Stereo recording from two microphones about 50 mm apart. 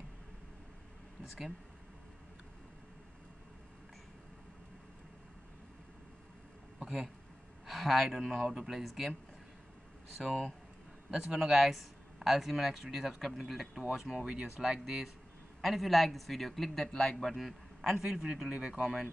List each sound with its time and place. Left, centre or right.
6.8 s a sound: centre
7.6 s speech: centre
10.1 s speech: centre
16.8 s speech: centre; by 18.9 s right